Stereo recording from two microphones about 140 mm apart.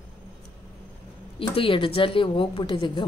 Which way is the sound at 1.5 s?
40° left (ahead or behind).